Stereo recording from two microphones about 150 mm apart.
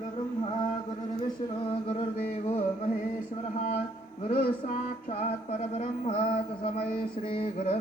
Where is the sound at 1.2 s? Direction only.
35° left (ahead or behind).